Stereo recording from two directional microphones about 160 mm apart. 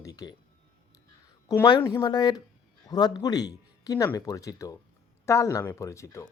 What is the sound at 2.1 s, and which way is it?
Speech, 25° left (ahead or behind).